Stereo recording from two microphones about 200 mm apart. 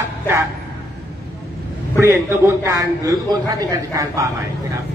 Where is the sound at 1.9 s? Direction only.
10° right (ahead or behind).